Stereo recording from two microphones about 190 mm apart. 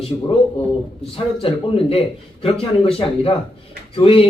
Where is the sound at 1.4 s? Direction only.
30° left (ahead or behind).